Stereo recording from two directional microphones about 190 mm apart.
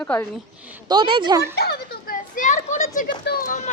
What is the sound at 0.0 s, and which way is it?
Speech, 10° left (ahead or behind).